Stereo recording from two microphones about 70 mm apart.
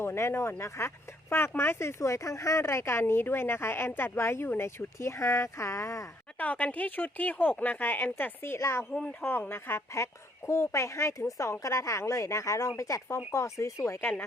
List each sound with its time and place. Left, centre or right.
0.0 s speech: left
6.3 s speech: left
8.9 s speech: centre
9.2 s speech: left
14.0 s speech: left